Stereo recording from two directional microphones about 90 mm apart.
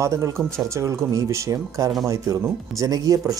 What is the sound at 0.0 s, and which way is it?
Speech, 35° right (ahead or behind).